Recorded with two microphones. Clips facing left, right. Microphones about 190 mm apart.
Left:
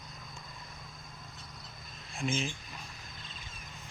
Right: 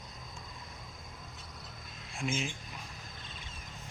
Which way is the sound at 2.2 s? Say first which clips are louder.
Left 1 dB; 10° right (ahead or behind).